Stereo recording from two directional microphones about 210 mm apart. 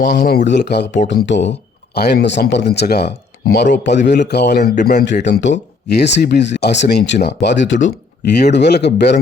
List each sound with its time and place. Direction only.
0.0 s speech: 40° left (ahead or behind)
0.4 s speech: 55° left (ahead or behind)
4.7 s speech: 35° left (ahead or behind)
4.9 s speech: 50° left (ahead or behind)